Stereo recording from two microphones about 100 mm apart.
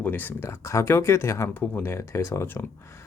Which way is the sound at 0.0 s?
20° left (ahead or behind).